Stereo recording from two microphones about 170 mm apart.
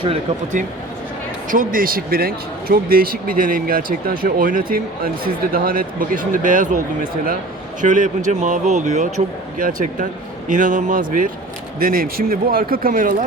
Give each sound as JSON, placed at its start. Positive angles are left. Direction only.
{"t": 1.5, "sound": "a man's voice", "side_deg": -55}